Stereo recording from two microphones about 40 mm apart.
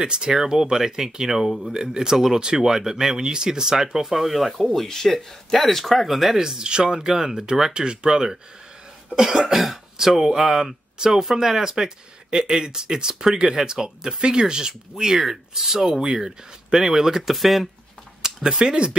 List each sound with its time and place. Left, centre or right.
0.0 s speech: centre
6.4 s speech: centre
18.2 s speech: centre